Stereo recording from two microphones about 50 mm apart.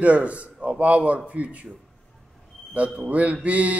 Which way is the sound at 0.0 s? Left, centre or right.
Right.